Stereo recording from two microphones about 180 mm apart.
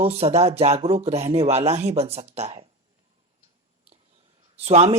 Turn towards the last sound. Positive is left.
turn(degrees=-35)  # may be behind; listen again after turning